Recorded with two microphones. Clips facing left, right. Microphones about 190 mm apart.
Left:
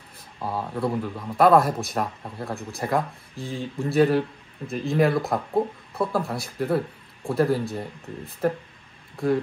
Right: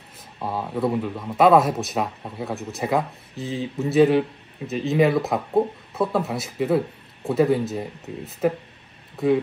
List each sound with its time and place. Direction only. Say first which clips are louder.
0.4 s speech: right 2 dB; centre (ahead or behind)